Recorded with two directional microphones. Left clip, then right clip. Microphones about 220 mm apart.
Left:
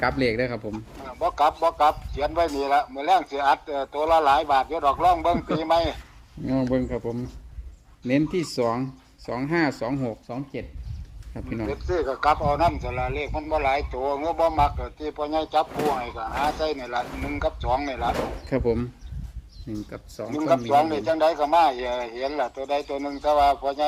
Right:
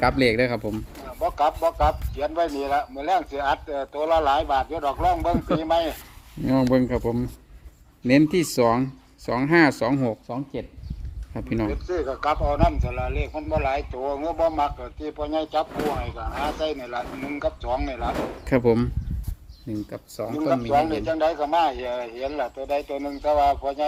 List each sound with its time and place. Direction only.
0.0 s speech: 30° right (ahead or behind)
1.0 s speech: 5° left (ahead or behind)
6.4 s speech: 40° right (ahead or behind)
10.2 s speech: 20° right (ahead or behind)
11.3 s speech: 40° right (ahead or behind)
11.7 s speech: 5° left (ahead or behind)
18.4 s speech: 40° right (ahead or behind)
19.9 s speech: 15° right (ahead or behind)
20.3 s speech: 5° left (ahead or behind)